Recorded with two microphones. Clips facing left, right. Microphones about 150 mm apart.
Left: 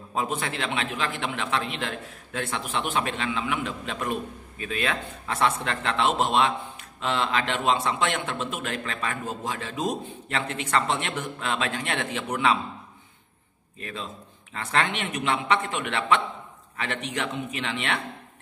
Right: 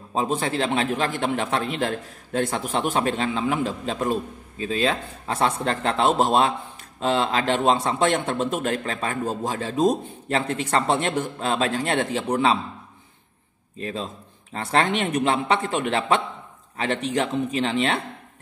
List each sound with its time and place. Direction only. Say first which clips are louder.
0.1 s a man's voice: right 5 dB; 30° right (ahead or behind)
13.7 s a man's voice: right 6 dB; 30° right (ahead or behind)